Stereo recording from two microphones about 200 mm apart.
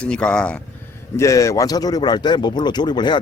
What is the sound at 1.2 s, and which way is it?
Speech, 15° left (ahead or behind).